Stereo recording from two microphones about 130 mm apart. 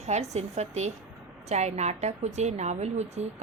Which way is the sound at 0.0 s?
60° right (ahead or behind).